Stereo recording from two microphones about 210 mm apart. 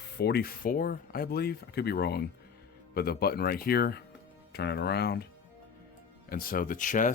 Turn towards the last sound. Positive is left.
turn(degrees=40)  # may be behind; listen again after turning